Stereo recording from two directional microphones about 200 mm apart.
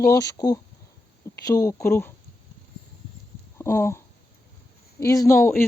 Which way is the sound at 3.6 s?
15° left (ahead or behind).